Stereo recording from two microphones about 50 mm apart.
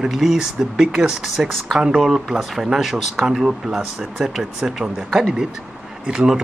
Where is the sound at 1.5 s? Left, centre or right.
Centre.